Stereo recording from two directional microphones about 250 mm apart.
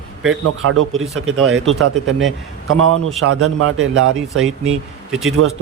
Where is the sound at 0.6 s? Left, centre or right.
Right.